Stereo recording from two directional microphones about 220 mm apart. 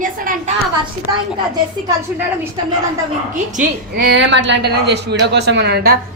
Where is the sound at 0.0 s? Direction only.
35° right (ahead or behind).